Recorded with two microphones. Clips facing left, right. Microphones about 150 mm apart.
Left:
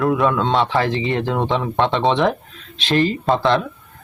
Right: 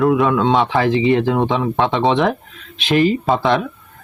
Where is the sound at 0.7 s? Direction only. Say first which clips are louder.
Right 5 dB; 15° right (ahead or behind).